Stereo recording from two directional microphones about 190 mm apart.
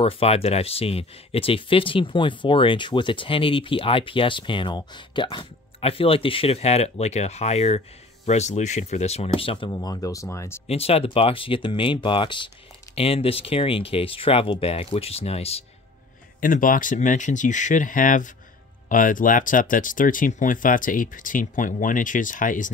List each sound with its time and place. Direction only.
0.0 s speech: 30° left (ahead or behind)
10.7 s speech: 30° left (ahead or behind)
16.3 s speech: 45° left (ahead or behind)